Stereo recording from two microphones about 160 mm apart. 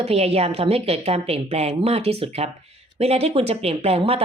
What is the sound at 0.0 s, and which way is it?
Speech, 40° right (ahead or behind).